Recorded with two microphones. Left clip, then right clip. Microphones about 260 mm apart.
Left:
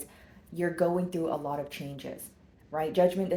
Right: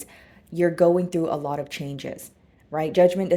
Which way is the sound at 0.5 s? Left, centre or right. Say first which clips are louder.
Right 9 dB; right.